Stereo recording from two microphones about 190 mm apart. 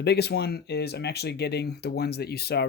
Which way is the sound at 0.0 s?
60° left (ahead or behind).